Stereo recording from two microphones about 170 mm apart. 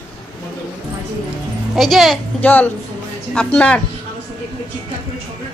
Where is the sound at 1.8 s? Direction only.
Centre (ahead or behind).